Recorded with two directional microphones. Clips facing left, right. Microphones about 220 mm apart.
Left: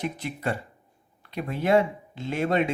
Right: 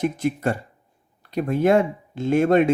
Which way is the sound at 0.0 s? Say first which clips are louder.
Right 8 dB; 45° right (ahead or behind).